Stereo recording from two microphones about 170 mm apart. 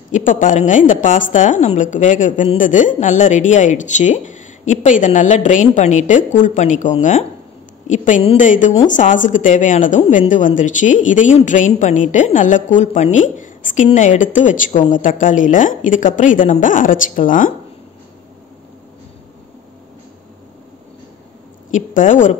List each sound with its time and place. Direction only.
0.1 s speech: 50° left (ahead or behind)
21.6 s speech: 50° left (ahead or behind)